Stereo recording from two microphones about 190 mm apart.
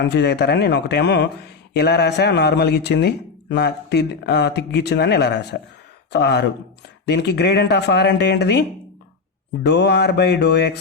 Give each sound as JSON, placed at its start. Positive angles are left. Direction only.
{"t": 0.0, "sound": "speech", "side_deg": 60}
{"t": 9.6, "sound": "speech", "side_deg": 65}